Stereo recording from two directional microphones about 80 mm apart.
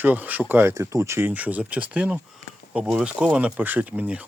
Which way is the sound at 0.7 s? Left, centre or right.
Right.